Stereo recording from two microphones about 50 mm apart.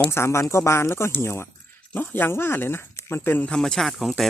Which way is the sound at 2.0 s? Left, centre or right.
Left.